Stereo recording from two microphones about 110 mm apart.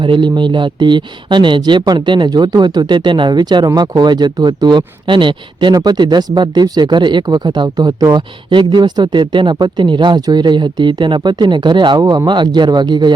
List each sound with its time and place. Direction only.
0.0 s speech: 45° right (ahead or behind)